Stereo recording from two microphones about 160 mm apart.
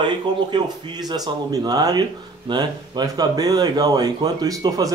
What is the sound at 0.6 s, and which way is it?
Speech, 25° right (ahead or behind).